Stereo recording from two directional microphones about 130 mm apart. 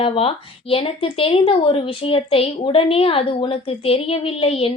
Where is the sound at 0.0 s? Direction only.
45° left (ahead or behind).